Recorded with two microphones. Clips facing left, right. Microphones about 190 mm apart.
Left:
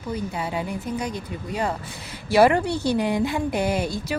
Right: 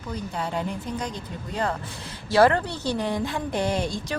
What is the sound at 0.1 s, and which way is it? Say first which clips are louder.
A woman's voice: left 2 dB; 10° left (ahead or behind).